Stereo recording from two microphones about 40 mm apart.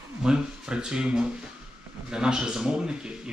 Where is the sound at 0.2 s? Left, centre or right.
Centre.